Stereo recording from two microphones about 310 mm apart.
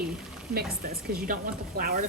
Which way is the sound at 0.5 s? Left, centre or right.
Right.